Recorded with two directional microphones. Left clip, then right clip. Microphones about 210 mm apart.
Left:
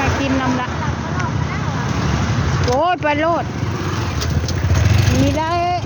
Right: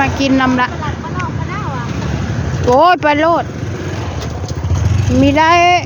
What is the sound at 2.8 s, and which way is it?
Speech, 30° right (ahead or behind).